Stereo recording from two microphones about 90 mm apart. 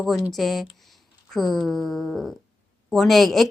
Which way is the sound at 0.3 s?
Centre (ahead or behind).